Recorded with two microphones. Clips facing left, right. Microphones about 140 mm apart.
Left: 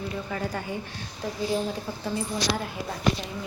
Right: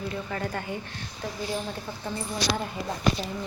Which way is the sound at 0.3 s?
5° left (ahead or behind).